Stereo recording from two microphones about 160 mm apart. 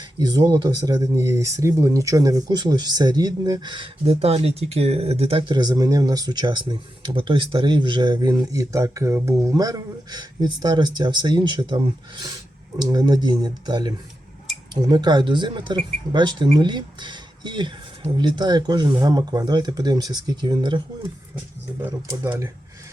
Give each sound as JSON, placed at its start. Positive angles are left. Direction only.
{"t": 0.2, "sound": "speech", "side_deg": -25}
{"t": 22.0, "sound": "speech", "side_deg": -15}